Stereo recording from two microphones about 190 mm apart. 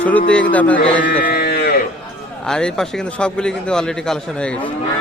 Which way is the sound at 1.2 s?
55° left (ahead or behind).